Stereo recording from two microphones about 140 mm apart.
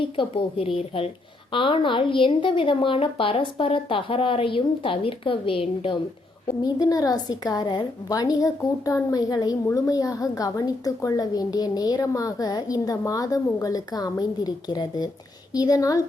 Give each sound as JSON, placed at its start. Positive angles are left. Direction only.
{"t": 0.2, "sound": "a woman's voice", "side_deg": 40}
{"t": 6.6, "sound": "a woman's voice", "side_deg": 25}